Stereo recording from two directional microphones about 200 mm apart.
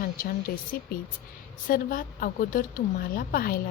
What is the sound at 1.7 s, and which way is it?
Speech, 45° left (ahead or behind).